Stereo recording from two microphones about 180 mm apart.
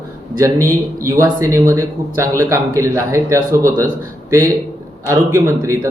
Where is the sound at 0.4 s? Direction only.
20° right (ahead or behind).